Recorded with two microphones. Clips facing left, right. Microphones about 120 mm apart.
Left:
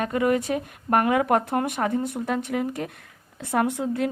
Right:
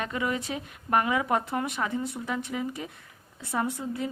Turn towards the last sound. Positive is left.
turn(degrees=75)  # may be behind; listen again after turning